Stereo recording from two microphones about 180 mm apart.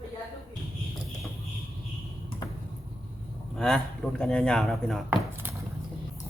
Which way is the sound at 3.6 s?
5° left (ahead or behind).